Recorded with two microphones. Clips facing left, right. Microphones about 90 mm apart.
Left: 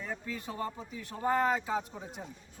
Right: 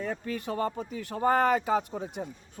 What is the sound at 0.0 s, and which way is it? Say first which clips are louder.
Speech: right 6 dB; 60° right (ahead or behind).